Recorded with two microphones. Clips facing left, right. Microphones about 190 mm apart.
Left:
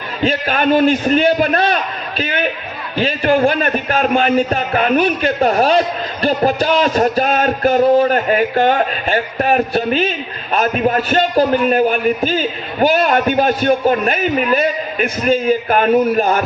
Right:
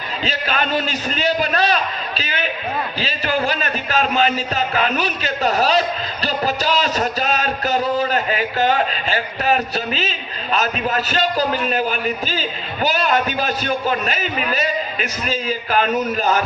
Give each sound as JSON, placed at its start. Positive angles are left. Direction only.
{"t": 0.2, "sound": "a man's voice", "side_deg": 55}